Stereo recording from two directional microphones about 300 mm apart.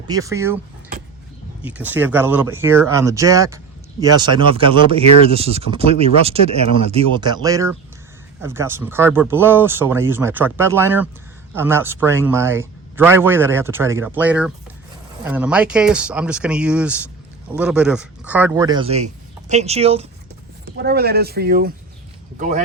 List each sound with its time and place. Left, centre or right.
0.1 s a man's voice: centre
1.6 s a man's voice: centre
20.7 s speech: right